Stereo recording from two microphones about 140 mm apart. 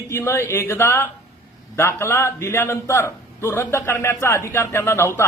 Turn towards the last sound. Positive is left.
turn(degrees=20)  # may be behind; listen again after turning